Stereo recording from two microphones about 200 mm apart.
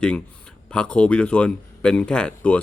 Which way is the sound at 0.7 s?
5° left (ahead or behind).